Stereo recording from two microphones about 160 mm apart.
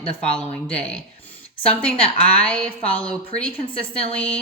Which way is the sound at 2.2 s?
5° left (ahead or behind).